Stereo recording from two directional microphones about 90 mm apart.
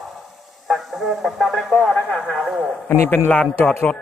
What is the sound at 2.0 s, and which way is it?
Speech, 20° left (ahead or behind).